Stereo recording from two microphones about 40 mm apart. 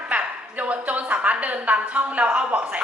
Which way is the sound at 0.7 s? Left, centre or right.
Right.